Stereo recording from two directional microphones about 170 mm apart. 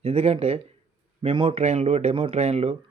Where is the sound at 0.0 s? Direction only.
35° right (ahead or behind).